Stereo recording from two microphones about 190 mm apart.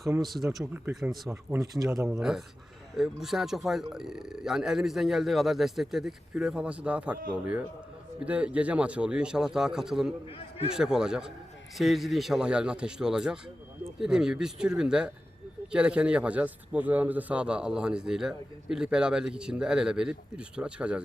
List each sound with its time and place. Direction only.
0.4 s speech: 15° right (ahead or behind)
0.9 s a man's voice: centre (ahead or behind)
1.3 s speech: 15° right (ahead or behind)
2.0 s a man's voice: 5° right (ahead or behind)
10.2 s a man's voice: 30° left (ahead or behind)
10.8 s a man's voice: 5° right (ahead or behind)